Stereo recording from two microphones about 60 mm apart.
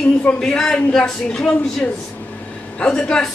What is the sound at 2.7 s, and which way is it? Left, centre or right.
Speech, centre.